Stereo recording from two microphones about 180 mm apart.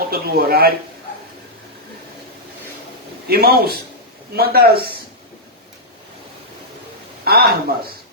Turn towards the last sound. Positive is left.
turn(degrees=-60)  # may be behind; listen again after turning